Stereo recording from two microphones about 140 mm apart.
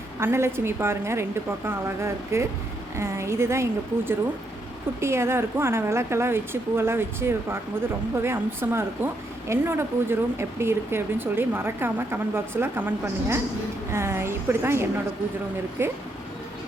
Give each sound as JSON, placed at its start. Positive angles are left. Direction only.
{"t": 0.2, "sound": "a woman's voice", "side_deg": -15}